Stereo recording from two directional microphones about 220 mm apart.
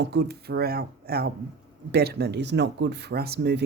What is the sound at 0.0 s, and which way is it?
Speech, 50° right (ahead or behind).